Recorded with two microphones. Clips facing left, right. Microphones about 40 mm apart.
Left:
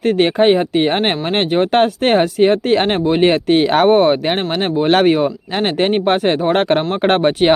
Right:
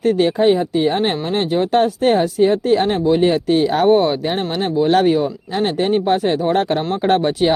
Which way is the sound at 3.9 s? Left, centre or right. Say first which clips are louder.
Left 2 dB; left.